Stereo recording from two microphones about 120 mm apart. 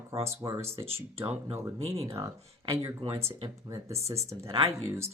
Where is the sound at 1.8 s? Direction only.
55° right (ahead or behind).